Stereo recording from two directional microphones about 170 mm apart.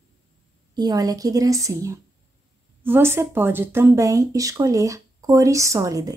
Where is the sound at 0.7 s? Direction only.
20° right (ahead or behind).